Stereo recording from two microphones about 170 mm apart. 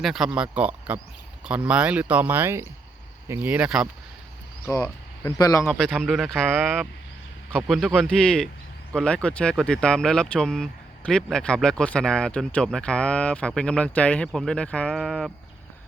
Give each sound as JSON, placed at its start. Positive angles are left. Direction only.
{"t": 0.0, "sound": "speech", "side_deg": 0}
{"t": 4.7, "sound": "speech", "side_deg": 15}
{"t": 5.7, "sound": "speech", "side_deg": 0}